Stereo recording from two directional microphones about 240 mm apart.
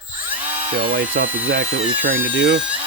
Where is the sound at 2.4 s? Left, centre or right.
Right.